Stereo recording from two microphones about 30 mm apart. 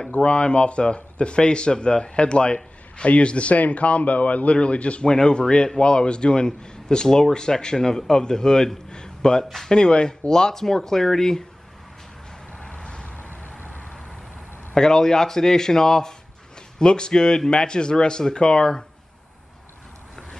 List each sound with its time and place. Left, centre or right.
0.1 s speech: left
5.1 s speech: left
12.7 s vehicle: left
13.2 s vehicle: left
14.7 s speech: left